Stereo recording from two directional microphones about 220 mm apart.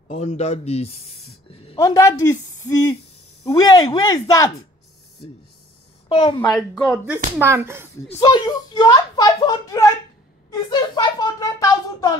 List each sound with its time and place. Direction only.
0.1 s speech: 30° left (ahead or behind)
1.8 s speech: 15° left (ahead or behind)
6.0 s a woman's voice: 25° left (ahead or behind)
6.5 s speech: 5° left (ahead or behind)
7.3 s speech: 10° right (ahead or behind)
8.2 s speech: 20° left (ahead or behind)
10.5 s a sound: 20° left (ahead or behind)